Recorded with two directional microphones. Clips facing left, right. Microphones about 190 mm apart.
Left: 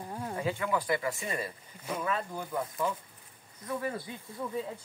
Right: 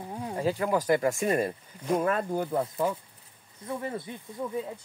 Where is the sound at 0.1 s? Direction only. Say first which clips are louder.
Right 2 dB; 10° right (ahead or behind).